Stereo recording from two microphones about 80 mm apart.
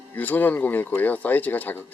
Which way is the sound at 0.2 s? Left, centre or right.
Left.